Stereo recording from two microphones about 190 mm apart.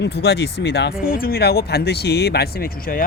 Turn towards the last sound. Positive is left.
turn(degrees=50)  # may be behind; listen again after turning